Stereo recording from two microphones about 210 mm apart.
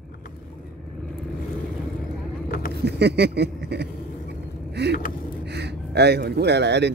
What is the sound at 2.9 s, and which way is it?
Speech, 55° right (ahead or behind).